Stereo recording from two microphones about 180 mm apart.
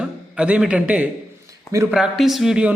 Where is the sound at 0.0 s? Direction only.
5° right (ahead or behind).